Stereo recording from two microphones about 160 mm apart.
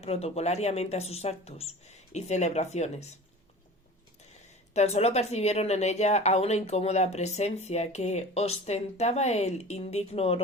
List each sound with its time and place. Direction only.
0.0 s speech: 40° left (ahead or behind)
4.7 s speech: 45° left (ahead or behind)